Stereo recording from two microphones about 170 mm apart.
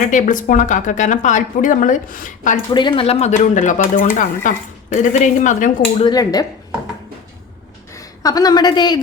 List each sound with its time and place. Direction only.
0.1 s speech: 50° left (ahead or behind)
2.6 s speech: 25° left (ahead or behind); by 5.7 s 50° left (ahead or behind)
6.0 s a woman's voice: 25° left (ahead or behind)
8.2 s a woman's voice: 20° left (ahead or behind)